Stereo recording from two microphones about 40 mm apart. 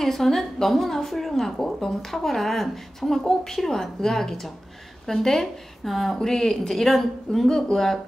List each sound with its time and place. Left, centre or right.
0.0 s a woman's voice: centre